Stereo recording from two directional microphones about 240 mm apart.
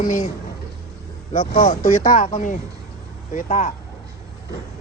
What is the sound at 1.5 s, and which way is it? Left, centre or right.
Speech, left.